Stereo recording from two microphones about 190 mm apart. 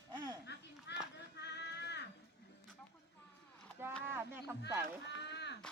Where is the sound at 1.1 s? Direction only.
65° left (ahead or behind).